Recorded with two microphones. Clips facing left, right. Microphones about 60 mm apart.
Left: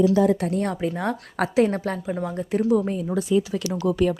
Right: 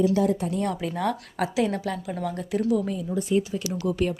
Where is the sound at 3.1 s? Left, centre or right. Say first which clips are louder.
Left 2 dB; left.